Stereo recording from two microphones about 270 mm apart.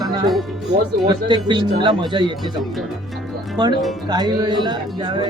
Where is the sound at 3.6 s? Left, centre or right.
Centre.